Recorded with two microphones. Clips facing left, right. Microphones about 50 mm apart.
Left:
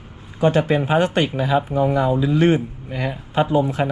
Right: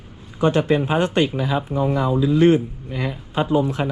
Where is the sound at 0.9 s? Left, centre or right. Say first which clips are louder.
Left 1 dB; left.